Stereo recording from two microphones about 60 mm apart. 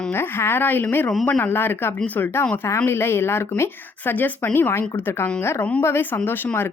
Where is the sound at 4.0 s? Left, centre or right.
Left.